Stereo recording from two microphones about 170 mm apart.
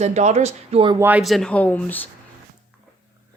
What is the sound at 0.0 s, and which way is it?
Speech, 40° right (ahead or behind).